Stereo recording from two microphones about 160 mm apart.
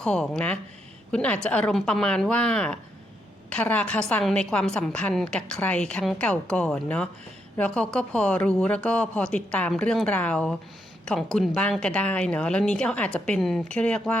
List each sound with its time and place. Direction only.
0.0 s a woman's voice: 5° left (ahead or behind)